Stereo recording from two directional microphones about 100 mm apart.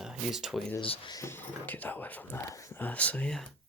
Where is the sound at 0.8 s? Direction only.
60° left (ahead or behind).